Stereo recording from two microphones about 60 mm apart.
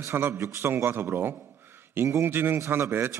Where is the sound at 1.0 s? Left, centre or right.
Right.